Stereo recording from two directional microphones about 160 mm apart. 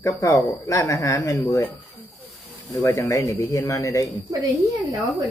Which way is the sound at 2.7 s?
20° left (ahead or behind).